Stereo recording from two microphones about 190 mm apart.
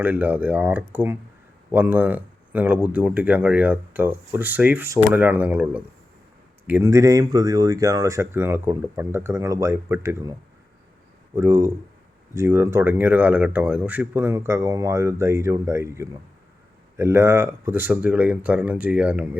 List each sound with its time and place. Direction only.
0.0 s speech: 10° right (ahead or behind)
11.3 s speech: 15° right (ahead or behind)